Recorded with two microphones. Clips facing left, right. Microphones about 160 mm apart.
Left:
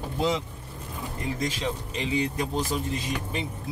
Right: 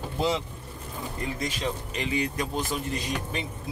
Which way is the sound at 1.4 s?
30° left (ahead or behind).